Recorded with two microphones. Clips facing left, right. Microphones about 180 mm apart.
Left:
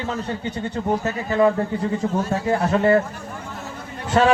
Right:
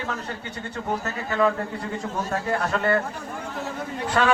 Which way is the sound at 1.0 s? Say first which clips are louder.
Left 4 dB; 20° left (ahead or behind).